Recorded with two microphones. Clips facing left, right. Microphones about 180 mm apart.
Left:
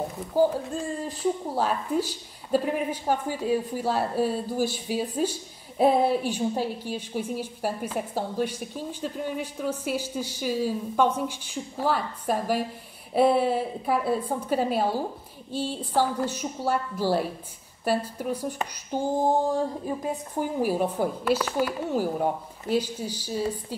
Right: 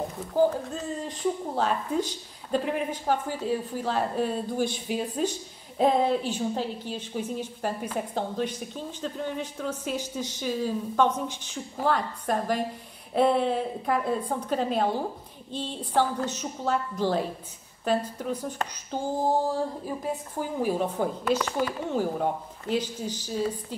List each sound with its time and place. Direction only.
0.3 s a woman's voice: 10° left (ahead or behind)
20.3 s a woman's voice: 10° left (ahead or behind)